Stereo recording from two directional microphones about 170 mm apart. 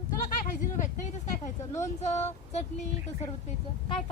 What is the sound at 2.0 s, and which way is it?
Speech, 40° left (ahead or behind).